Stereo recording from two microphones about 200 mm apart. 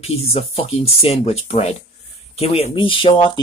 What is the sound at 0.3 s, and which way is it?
Speech, 30° left (ahead or behind).